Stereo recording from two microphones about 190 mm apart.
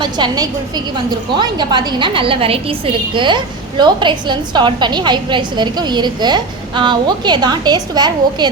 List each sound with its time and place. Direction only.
0.0 s a woman's voice: 25° right (ahead or behind)